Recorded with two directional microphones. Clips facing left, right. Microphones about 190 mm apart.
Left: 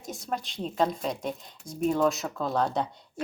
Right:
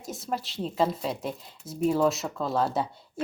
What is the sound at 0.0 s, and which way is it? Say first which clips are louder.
A woman's voice: right 1 dB; centre (ahead or behind).